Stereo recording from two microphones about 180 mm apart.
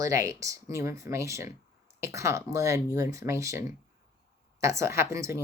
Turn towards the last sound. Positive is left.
turn(degrees=-15)  # may be behind; listen again after turning